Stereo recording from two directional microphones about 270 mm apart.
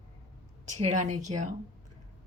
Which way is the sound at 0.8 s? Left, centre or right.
Right.